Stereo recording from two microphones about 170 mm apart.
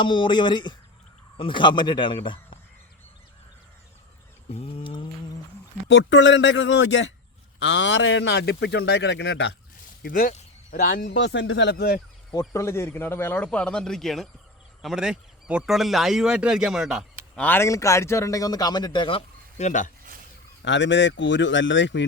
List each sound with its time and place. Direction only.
0.0 s a man's voice: 25° left (ahead or behind)
4.8 s a sound: 30° left (ahead or behind)
5.9 s a man's voice: 90° left
10.0 s speech: 60° left (ahead or behind); by 11.9 s 80° left
12.3 s speech: 20° left (ahead or behind); by 17.1 s centre (ahead or behind)
17.3 s a man's voice: 10° left (ahead or behind); by 19.9 s 45° left (ahead or behind)
20.6 s a man's voice: 90° left